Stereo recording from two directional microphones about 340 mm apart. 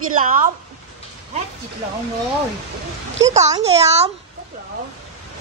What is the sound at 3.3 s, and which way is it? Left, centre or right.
Speech, centre.